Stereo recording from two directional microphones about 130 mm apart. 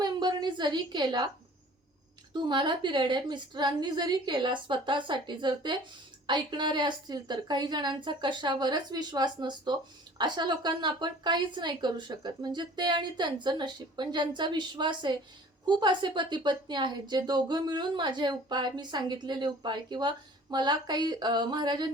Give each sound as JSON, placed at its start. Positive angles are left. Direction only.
{"t": 0.0, "sound": "a woman's voice", "side_deg": -35}
{"t": 2.3, "sound": "a woman's voice", "side_deg": -35}